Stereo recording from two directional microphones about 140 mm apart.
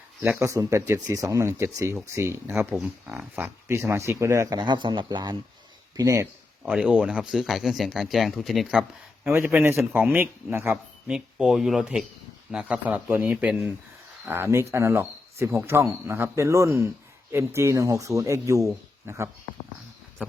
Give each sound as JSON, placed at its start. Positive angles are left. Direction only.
{"t": 0.2, "sound": "speech", "side_deg": -15}
{"t": 2.7, "sound": "speech", "side_deg": -5}
{"t": 4.5, "sound": "speech", "side_deg": -35}
{"t": 6.6, "sound": "speech", "side_deg": -10}
{"t": 9.5, "sound": "speech", "side_deg": -15}
{"t": 11.1, "sound": "speech", "side_deg": -5}